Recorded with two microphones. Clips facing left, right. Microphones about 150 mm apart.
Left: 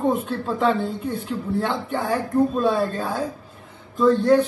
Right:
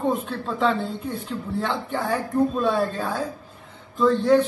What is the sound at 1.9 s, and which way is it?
A man's voice, centre (ahead or behind).